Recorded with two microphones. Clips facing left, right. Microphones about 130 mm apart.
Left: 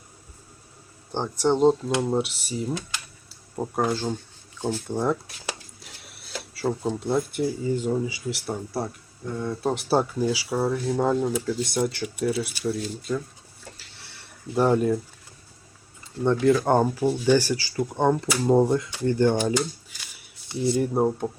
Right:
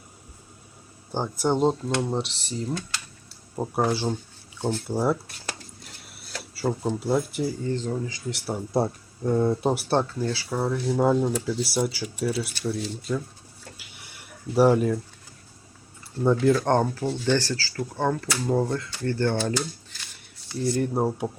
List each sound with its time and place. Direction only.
1.1 s speech: 5° right (ahead or behind)
3.2 s a sound: 5° right (ahead or behind)
4.9 s speech: 5° right (ahead or behind)
8.9 s speech: 35° right (ahead or behind)
9.7 s speech: 5° left (ahead or behind)
13.7 s a sound: 15° right (ahead or behind)
16.2 s speech: centre (ahead or behind); by 19.5 s 15° left (ahead or behind)
19.9 s a sound: 5° left (ahead or behind)
20.7 s speech: centre (ahead or behind)